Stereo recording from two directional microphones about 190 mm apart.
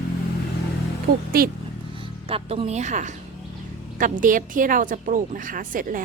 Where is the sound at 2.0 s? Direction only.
30° right (ahead or behind).